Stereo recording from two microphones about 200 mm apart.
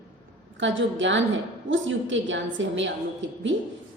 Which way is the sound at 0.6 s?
70° right (ahead or behind).